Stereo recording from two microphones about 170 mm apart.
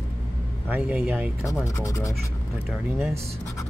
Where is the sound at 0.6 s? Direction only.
10° right (ahead or behind).